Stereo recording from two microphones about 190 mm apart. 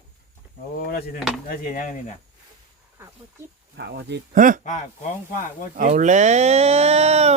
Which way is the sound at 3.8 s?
60° right (ahead or behind).